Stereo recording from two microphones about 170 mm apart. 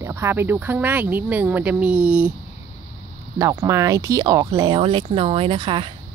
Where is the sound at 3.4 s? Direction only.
20° right (ahead or behind).